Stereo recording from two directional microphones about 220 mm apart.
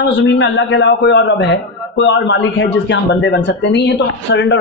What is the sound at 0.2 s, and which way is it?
A man's voice, 55° left (ahead or behind).